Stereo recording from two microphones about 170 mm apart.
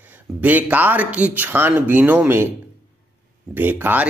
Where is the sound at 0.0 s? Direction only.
10° right (ahead or behind).